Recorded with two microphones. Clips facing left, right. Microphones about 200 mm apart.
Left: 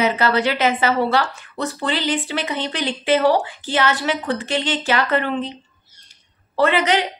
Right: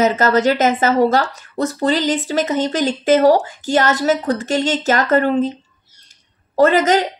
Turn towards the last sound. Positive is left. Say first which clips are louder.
# right 5 dB
turn(degrees=-40)  # may be behind; listen again after turning